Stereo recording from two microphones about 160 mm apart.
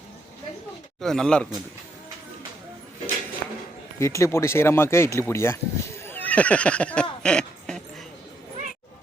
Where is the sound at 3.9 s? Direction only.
20° left (ahead or behind).